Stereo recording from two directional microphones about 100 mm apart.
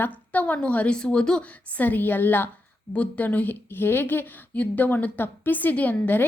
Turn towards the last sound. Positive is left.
turn(degrees=20)  # may be behind; listen again after turning